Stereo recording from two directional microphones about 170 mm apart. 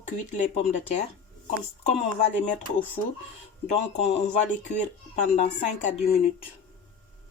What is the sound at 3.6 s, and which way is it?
Speech, 40° left (ahead or behind).